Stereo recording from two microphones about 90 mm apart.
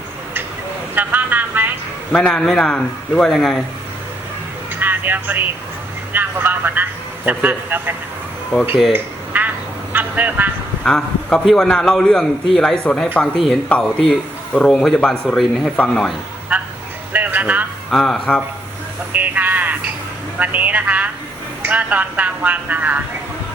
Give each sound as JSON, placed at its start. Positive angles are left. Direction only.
{"t": 0.9, "sound": "speech", "side_deg": -20}
{"t": 2.1, "sound": "a man's voice", "side_deg": 5}
{"t": 4.8, "sound": "music", "side_deg": -20}
{"t": 6.1, "sound": "speech", "side_deg": -20}
{"t": 8.9, "sound": "duck", "side_deg": -20}
{"t": 9.9, "sound": "speech", "side_deg": -20}
{"t": 10.8, "sound": "a man's voice", "side_deg": 10}
{"t": 13.3, "sound": "a man's voice", "side_deg": 0}
{"t": 13.7, "sound": "speech", "side_deg": 15}
{"t": 17.1, "sound": "a sound", "side_deg": -20}
{"t": 17.9, "sound": "speech", "side_deg": 5}
{"t": 19.1, "sound": "a sound", "side_deg": -20}
{"t": 20.4, "sound": "a man's voice", "side_deg": -20}